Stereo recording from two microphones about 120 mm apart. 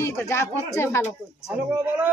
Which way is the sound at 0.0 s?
25° left (ahead or behind).